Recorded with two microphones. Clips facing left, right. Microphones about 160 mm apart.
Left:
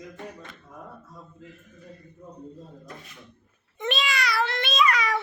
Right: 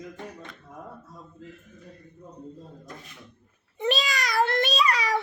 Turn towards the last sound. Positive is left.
turn(degrees=-35)  # may be behind; listen again after turning